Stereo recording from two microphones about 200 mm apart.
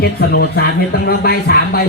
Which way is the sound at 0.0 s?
50° left (ahead or behind).